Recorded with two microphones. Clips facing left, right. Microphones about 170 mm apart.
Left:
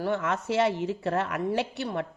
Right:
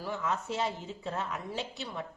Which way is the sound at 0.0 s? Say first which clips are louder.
Left 6 dB; 70° left (ahead or behind).